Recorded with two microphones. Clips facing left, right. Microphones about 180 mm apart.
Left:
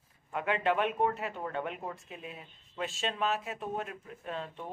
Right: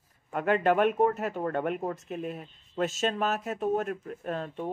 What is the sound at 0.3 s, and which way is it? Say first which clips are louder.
Speech: right 5 dB; 45° right (ahead or behind).